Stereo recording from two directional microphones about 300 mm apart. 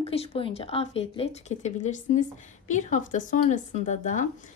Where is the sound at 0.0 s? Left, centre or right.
Centre.